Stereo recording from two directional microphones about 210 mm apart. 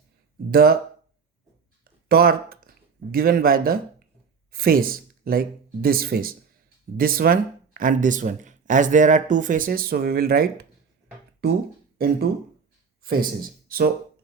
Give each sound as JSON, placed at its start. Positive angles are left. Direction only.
{"t": 0.5, "sound": "speech", "side_deg": -45}
{"t": 1.8, "sound": "a sound", "side_deg": -45}
{"t": 4.5, "sound": "speech", "side_deg": -45}
{"t": 11.9, "sound": "a man's voice", "side_deg": -45}